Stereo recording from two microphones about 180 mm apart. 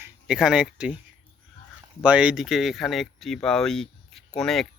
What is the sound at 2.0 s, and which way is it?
Speech, 5° right (ahead or behind).